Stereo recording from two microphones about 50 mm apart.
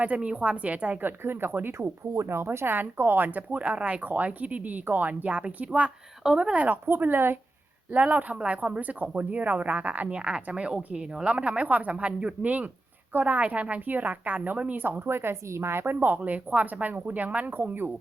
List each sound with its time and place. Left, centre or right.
0.0 s speech: right
1.2 s a woman's voice: right
1.5 s speech: right
1.8 s speech: right
7.0 s a woman's voice: right
8.0 s speech: right
10.2 s speech: centre
14.8 s a woman's voice: right
16.1 s speech: right